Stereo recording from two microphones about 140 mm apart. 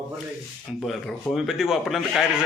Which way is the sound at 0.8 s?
Centre (ahead or behind).